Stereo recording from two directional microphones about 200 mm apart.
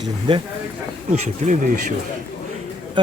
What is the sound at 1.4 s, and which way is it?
Speech, 35° right (ahead or behind).